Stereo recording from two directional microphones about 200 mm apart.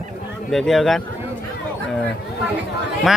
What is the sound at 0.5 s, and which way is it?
Speech, centre (ahead or behind).